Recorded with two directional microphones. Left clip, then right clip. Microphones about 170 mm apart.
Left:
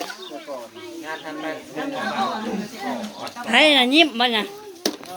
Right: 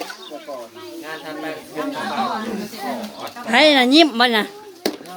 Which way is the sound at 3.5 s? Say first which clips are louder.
Right 1 dB; 15° right (ahead or behind).